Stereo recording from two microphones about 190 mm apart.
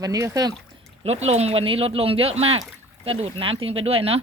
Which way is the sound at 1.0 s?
35° right (ahead or behind).